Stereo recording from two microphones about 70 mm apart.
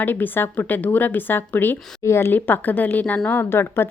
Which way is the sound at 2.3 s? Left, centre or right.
Left.